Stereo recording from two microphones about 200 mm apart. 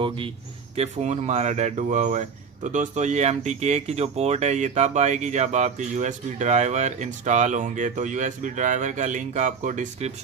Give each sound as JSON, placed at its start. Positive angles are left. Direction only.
{"t": 0.7, "sound": "speech", "side_deg": -35}